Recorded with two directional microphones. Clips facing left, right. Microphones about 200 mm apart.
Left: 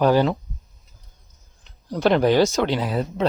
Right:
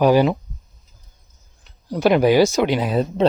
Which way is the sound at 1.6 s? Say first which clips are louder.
Right 2 dB; 10° right (ahead or behind).